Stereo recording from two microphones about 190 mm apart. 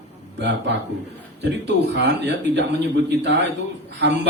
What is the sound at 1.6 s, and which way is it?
A man's voice, 65° right (ahead or behind).